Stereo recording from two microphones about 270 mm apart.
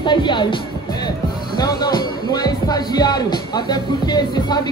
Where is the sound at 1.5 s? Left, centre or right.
Centre.